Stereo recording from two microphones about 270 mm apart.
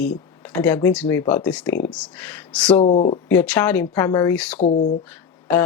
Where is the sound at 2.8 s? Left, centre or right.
Left.